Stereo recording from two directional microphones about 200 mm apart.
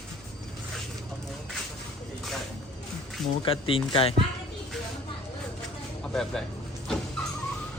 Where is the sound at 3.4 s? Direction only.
25° left (ahead or behind).